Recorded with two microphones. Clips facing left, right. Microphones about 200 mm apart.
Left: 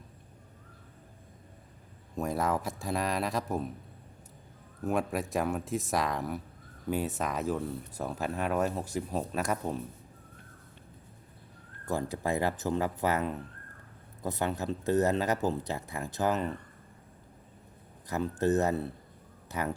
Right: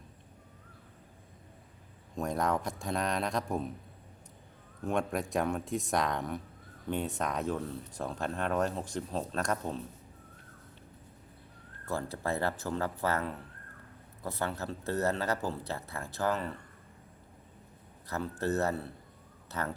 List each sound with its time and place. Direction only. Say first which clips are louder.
2.1 s speech: left 1 dB; 5° left (ahead or behind)
4.8 s speech: left 1 dB; 5° left (ahead or behind)
11.9 s speech: left 3 dB; 15° left (ahead or behind)
18.1 s speech: left 5 dB; 15° left (ahead or behind)